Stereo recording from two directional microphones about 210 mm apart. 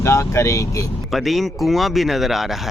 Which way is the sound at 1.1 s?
Centre (ahead or behind).